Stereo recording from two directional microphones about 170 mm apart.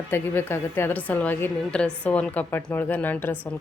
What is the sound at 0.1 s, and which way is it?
A woman's voice, 15° left (ahead or behind).